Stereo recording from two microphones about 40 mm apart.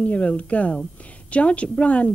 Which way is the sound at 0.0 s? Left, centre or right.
Left.